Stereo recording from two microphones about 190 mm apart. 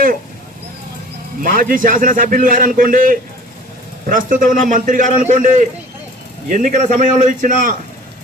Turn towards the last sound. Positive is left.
turn(degrees=-40)  # may be behind; listen again after turning